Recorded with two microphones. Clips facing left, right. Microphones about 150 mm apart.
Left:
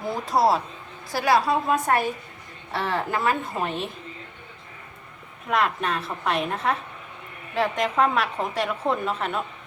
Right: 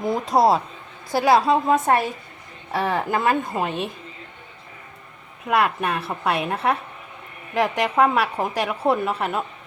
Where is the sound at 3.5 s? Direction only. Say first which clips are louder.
Right 3 dB; 15° right (ahead or behind).